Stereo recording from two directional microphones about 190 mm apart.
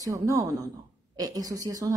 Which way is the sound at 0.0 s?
15° right (ahead or behind).